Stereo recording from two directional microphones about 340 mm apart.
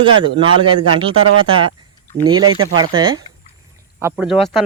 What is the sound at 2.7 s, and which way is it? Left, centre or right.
Speech, centre.